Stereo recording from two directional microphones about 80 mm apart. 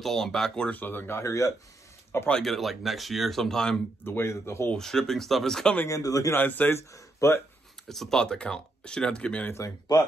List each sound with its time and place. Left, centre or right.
0.0 s speech: centre
0.7 s speech: left
2.4 s speech: centre
4.0 s speech: left
4.7 s speech: centre
5.9 s a man's voice: left
6.3 s speech: left
6.8 s speech: left
7.9 s speech: centre